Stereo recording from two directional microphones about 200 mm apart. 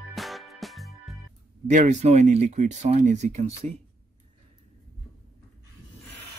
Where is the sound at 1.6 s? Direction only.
35° right (ahead or behind).